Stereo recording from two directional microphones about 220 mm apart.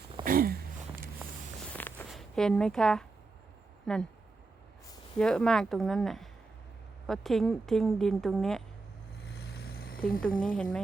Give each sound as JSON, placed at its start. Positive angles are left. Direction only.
{"t": 0.3, "sound": "a sound", "side_deg": -40}
{"t": 1.7, "sound": "a sound", "side_deg": 5}
{"t": 3.9, "sound": "a woman's voice", "side_deg": 5}
{"t": 5.1, "sound": "a woman's voice", "side_deg": 5}
{"t": 9.2, "sound": "vehicle", "side_deg": 45}
{"t": 10.5, "sound": "a woman's voice", "side_deg": 5}